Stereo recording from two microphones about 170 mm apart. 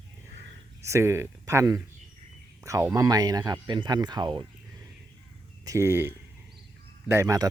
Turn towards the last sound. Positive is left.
turn(degrees=-20)  # may be behind; listen again after turning